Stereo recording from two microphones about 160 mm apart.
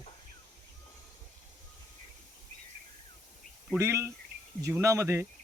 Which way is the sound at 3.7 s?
15° right (ahead or behind).